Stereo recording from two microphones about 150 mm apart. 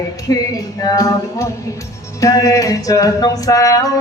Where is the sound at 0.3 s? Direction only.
25° left (ahead or behind).